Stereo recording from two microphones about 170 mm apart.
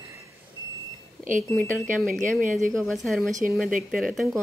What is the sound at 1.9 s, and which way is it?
Speech, centre (ahead or behind).